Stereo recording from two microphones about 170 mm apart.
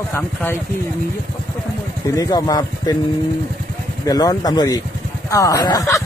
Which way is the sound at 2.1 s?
20° left (ahead or behind).